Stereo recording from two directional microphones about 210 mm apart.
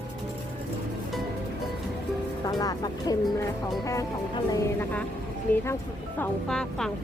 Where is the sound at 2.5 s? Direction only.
20° left (ahead or behind).